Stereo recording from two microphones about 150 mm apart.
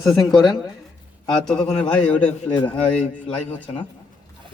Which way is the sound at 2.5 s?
30° left (ahead or behind).